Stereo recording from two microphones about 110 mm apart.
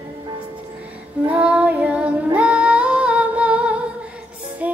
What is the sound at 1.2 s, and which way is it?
Female singing, 10° right (ahead or behind).